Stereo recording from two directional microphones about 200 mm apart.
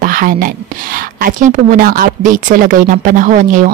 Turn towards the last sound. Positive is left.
turn(degrees=-40)  # may be behind; listen again after turning